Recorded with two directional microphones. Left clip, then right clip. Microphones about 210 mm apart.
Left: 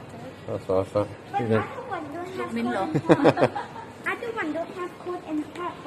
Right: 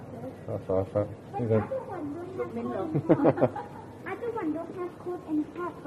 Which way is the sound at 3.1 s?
20° left (ahead or behind).